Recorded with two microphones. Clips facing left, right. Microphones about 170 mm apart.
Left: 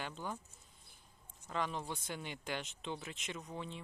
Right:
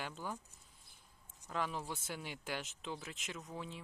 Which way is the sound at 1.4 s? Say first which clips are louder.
Left 1 dB; 5° right (ahead or behind).